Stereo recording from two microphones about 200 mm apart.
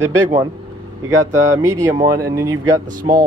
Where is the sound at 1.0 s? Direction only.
15° right (ahead or behind).